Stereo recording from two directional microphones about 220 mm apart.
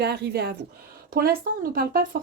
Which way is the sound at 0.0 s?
45° right (ahead or behind).